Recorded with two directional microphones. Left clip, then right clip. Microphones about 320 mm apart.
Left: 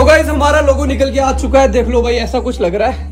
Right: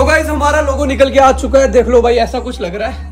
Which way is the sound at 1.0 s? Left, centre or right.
Centre.